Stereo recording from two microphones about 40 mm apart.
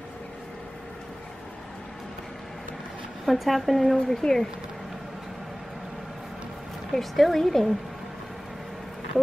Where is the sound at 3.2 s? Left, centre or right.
Centre.